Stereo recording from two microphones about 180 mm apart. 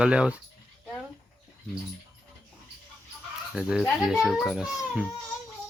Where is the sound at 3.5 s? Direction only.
5° right (ahead or behind).